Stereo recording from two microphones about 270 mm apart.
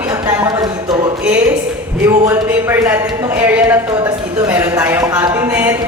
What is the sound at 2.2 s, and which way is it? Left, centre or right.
A woman's voice, centre.